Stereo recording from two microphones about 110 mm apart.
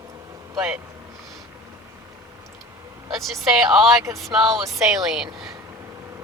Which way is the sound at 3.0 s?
Centre (ahead or behind).